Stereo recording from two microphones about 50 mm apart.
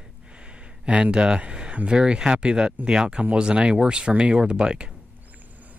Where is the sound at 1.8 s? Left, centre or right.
Centre.